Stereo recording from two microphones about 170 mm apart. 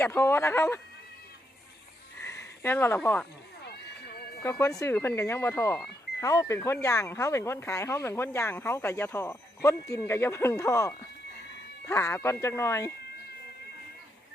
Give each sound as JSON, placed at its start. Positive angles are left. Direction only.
{"t": 0.0, "sound": "speech", "side_deg": 15}
{"t": 2.2, "sound": "speech", "side_deg": 15}
{"t": 4.4, "sound": "speech", "side_deg": 15}